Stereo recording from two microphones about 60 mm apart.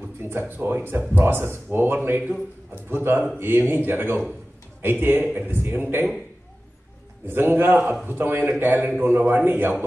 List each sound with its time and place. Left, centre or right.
0.2 s a man's voice: right
7.2 s a man's voice: right